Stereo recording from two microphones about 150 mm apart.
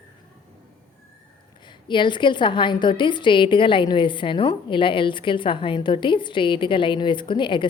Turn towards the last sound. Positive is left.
turn(degrees=30)  # may be behind; listen again after turning